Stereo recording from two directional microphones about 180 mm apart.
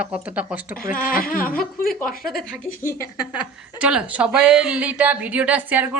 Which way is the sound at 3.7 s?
5° right (ahead or behind).